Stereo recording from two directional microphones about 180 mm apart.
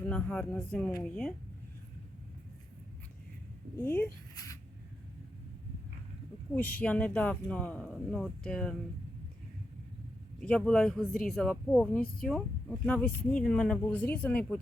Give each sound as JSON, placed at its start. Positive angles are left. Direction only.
{"t": 0.0, "sound": "speech", "side_deg": 10}
{"t": 3.8, "sound": "speech", "side_deg": 10}
{"t": 6.7, "sound": "speech", "side_deg": 5}
{"t": 10.4, "sound": "a man's voice", "side_deg": 5}